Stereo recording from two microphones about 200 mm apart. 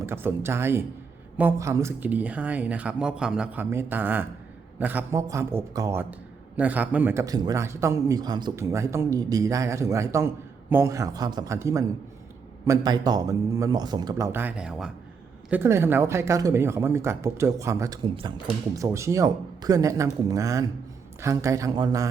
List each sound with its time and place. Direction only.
0.0 s a man's voice: 10° right (ahead or behind)